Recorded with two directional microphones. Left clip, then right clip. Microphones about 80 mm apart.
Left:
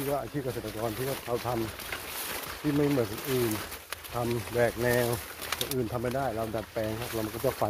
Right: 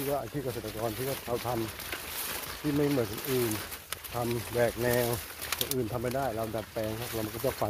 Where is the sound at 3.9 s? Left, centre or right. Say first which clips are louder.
Left 1 dB; centre.